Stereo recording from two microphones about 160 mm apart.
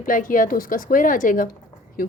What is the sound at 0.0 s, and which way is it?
A woman's voice, 60° left (ahead or behind).